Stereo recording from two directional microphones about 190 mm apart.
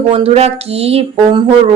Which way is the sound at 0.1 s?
30° right (ahead or behind).